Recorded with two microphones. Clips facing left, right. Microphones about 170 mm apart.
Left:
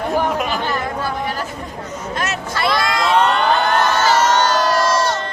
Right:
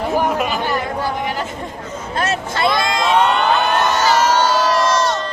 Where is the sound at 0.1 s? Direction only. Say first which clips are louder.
Right 1 dB; 5° right (ahead or behind).